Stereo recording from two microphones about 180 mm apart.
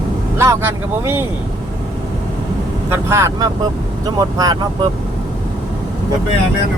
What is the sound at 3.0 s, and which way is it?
Speech, 15° right (ahead or behind).